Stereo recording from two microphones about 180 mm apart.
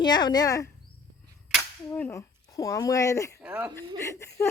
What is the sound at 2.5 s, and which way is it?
Speech, 20° left (ahead or behind).